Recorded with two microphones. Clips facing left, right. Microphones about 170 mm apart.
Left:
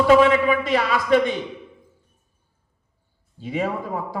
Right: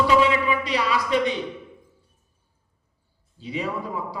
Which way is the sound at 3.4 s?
50° left (ahead or behind).